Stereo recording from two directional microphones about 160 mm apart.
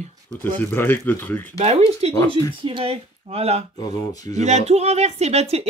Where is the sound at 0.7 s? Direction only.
15° left (ahead or behind).